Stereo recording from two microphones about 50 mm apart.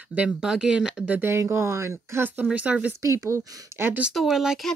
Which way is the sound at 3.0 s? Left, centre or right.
Right.